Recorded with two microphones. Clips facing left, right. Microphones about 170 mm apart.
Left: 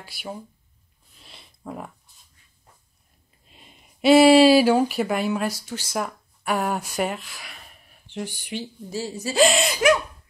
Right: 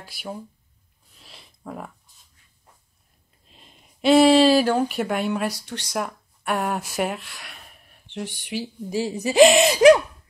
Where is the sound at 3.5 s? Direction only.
5° left (ahead or behind).